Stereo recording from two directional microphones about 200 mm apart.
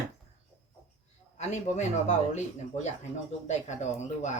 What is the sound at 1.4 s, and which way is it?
Speech, 35° left (ahead or behind).